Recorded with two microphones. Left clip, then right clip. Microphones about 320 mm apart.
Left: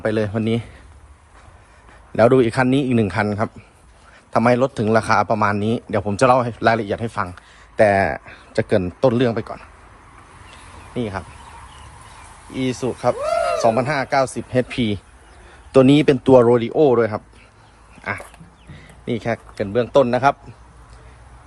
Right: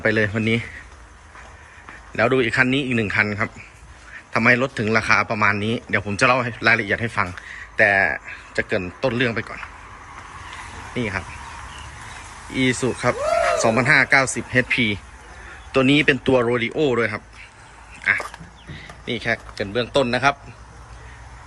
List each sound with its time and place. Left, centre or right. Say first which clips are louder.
0.0 s speech: right 1 dB; centre
2.1 s speech: left 3 dB; centre
7.8 s speech: left 1 dB; centre
10.9 s speech: even; centre
12.5 s speech: right 2 dB; centre